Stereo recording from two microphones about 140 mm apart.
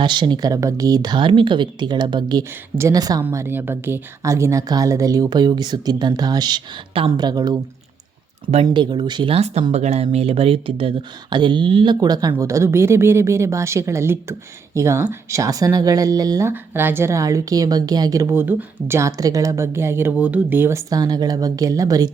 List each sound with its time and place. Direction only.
0.0 s speech: 35° right (ahead or behind)
3.2 s speech: 15° right (ahead or behind)
8.6 s speech: 35° right (ahead or behind)